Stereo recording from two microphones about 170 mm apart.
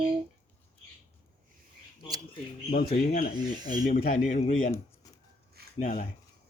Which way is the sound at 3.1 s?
55° left (ahead or behind).